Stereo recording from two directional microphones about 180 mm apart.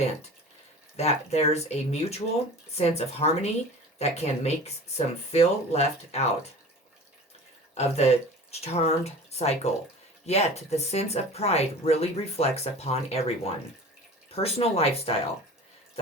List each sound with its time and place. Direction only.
0.9 s speech: 35° left (ahead or behind)
7.8 s speech: 35° left (ahead or behind)